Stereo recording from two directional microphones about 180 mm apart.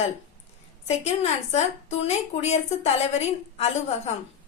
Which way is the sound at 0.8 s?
35° left (ahead or behind).